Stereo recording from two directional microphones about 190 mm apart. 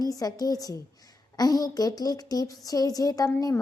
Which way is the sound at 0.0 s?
20° left (ahead or behind).